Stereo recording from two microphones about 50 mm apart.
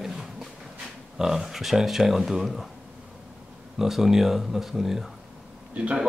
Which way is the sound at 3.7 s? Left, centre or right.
Centre.